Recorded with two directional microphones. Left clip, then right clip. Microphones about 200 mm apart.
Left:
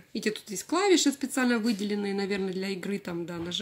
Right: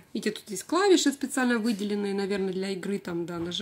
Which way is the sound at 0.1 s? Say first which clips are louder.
Even; centre (ahead or behind).